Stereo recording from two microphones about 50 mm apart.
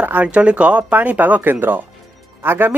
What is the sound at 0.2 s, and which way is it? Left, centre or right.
Speech, right.